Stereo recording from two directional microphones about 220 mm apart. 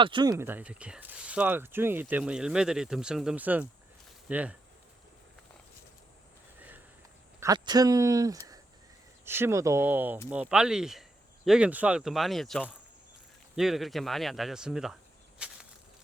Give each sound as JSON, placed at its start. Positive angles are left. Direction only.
{"t": 0.0, "sound": "speech", "side_deg": -20}
{"t": 7.3, "sound": "speech", "side_deg": -15}
{"t": 15.4, "sound": "a sound", "side_deg": -5}